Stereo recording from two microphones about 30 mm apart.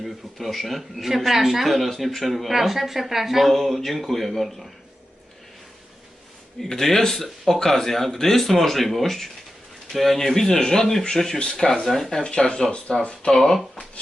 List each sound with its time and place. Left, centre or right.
0.0 s speech: centre
6.6 s speech: centre
10.3 s speech: centre
11.9 s speech: centre
12.2 s speech: left
13.3 s speech: centre